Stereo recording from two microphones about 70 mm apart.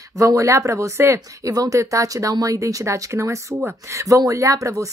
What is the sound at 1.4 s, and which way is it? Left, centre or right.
Speech, right.